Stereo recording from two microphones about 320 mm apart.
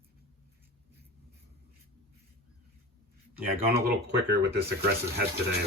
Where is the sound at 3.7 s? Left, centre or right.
Right.